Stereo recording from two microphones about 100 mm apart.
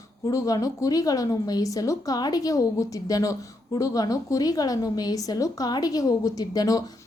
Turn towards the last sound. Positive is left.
turn(degrees=40)  # may be behind; listen again after turning